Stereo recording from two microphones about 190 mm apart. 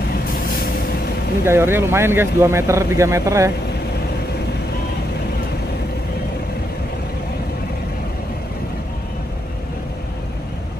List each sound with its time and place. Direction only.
0.3 s vehicle: 50° left (ahead or behind)
1.4 s speech: 10° right (ahead or behind)